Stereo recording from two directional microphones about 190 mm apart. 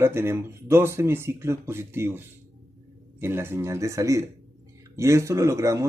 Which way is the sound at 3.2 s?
15° right (ahead or behind).